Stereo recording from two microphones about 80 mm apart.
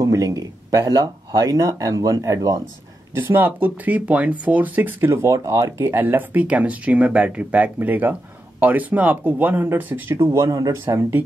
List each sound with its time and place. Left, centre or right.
0.0 s speech: right
3.2 s speech: right
5.3 s speech: right
5.8 s speech: right
10.3 s speech: right
10.9 s speech: right